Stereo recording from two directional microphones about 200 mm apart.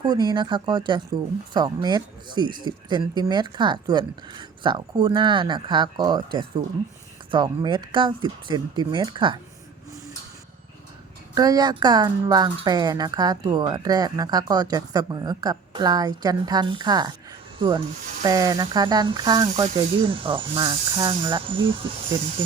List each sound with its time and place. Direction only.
0.0 s speech: 20° right (ahead or behind)
11.3 s speech: 20° right (ahead or behind)
18.2 s speech: 20° right (ahead or behind)